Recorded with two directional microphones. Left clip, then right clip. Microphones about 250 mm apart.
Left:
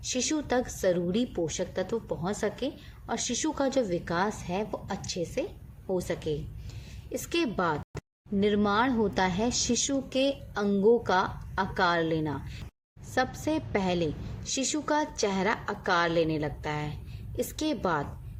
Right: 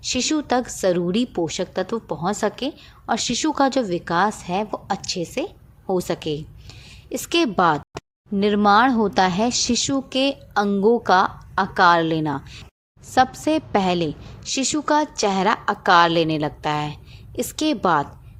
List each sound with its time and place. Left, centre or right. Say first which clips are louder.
0.0 s a woman's voice: right 8 dB; right